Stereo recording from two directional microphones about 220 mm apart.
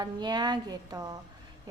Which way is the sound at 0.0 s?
20° right (ahead or behind).